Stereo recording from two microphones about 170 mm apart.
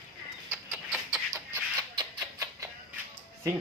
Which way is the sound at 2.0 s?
20° right (ahead or behind).